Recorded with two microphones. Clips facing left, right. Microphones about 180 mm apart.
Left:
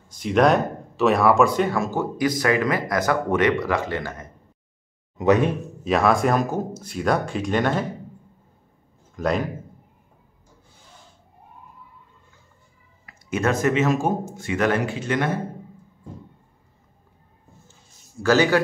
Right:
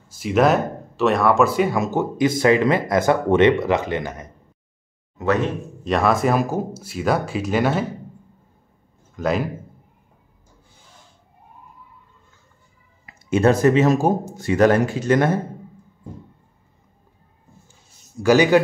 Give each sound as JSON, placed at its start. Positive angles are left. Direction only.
{"t": 0.1, "sound": "speech", "side_deg": -5}
{"t": 1.8, "sound": "speech", "side_deg": -20}
{"t": 5.1, "sound": "speech", "side_deg": 15}
{"t": 5.9, "sound": "speech", "side_deg": 0}
{"t": 9.1, "sound": "a man's voice", "side_deg": 0}
{"t": 13.0, "sound": "speech", "side_deg": -30}
{"t": 18.2, "sound": "a man's voice", "side_deg": -15}